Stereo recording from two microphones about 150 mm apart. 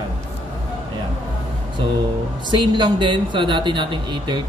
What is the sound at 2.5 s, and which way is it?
Speech, 30° right (ahead or behind).